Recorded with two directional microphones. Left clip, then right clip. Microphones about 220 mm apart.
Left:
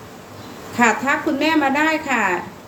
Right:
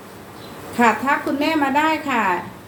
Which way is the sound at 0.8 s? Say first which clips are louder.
Even; 15° left (ahead or behind).